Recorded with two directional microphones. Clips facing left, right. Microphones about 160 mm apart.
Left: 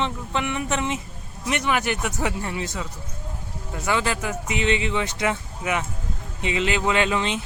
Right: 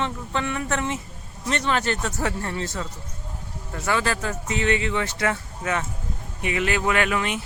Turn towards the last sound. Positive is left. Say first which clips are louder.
# left 1 dB
turn(degrees=25)  # may be behind; listen again after turning